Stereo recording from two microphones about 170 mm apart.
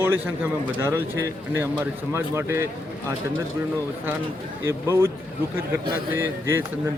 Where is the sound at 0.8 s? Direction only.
15° right (ahead or behind).